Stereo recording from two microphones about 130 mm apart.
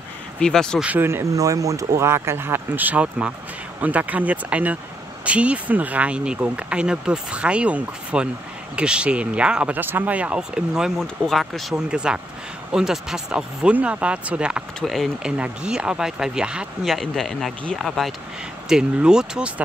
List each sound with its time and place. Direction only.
0.4 s speech: 5° left (ahead or behind)
0.8 s speech: 15° right (ahead or behind)